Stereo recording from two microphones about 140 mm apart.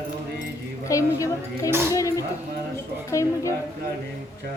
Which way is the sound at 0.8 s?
25° left (ahead or behind).